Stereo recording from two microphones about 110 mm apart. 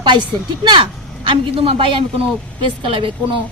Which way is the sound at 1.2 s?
55° right (ahead or behind).